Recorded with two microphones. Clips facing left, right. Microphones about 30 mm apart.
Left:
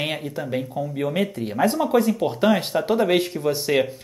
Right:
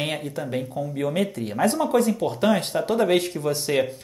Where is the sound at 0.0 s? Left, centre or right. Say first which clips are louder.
Left 1 dB; centre.